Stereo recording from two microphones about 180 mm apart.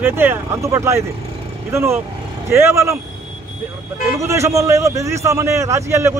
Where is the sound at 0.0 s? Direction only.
10° right (ahead or behind).